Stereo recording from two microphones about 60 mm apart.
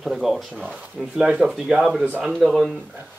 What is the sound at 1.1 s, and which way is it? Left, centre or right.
Speech, centre.